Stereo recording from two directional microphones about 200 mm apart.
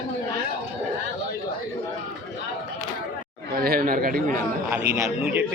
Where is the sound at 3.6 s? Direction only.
45° right (ahead or behind).